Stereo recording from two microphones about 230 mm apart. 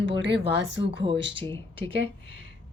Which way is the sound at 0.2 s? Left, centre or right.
Right.